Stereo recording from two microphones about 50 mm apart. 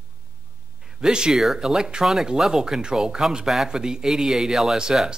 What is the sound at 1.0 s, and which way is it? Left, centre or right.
Speech, centre.